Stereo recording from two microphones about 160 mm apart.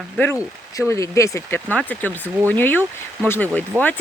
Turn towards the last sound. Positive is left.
turn(degrees=-5)  # may be behind; listen again after turning